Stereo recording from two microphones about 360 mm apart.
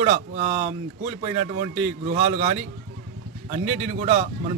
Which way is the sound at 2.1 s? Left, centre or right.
Centre.